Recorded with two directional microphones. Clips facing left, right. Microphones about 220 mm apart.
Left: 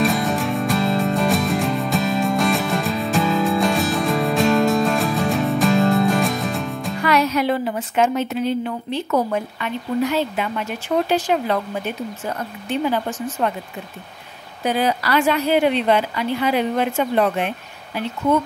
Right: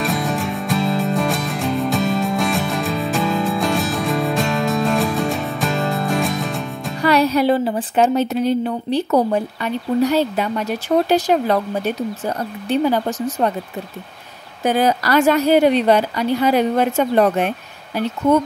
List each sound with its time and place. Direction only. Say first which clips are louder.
0.0 s music: left 2 dB; centre (ahead or behind)
7.0 s speech: right 4 dB; 35° right (ahead or behind)
14.6 s a woman's voice: right 3 dB; 45° right (ahead or behind)